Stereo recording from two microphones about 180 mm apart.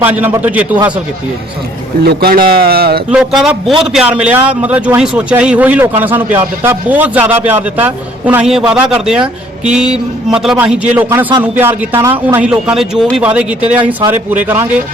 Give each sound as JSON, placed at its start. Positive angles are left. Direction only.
{"t": 0.0, "sound": "a man's voice", "side_deg": -10}
{"t": 2.0, "sound": "speech", "side_deg": -55}
{"t": 3.1, "sound": "a man's voice", "side_deg": -5}